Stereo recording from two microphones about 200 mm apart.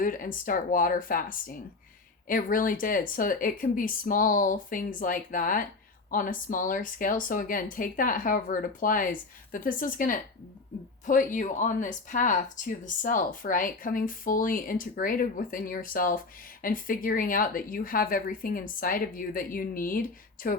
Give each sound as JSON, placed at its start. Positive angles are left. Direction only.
{"t": 0.0, "sound": "speech", "side_deg": 45}